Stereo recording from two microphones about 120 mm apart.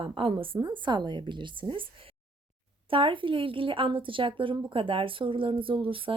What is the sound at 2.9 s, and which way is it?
A woman's voice, 45° right (ahead or behind).